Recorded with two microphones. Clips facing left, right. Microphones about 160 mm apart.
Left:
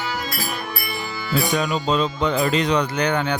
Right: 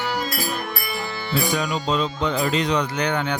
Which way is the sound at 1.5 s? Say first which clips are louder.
Left 2 dB; 55° left (ahead or behind).